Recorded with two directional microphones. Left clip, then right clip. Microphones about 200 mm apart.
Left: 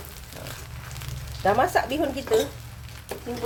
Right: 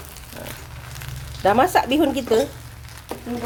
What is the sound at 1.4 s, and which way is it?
Speech, 50° right (ahead or behind).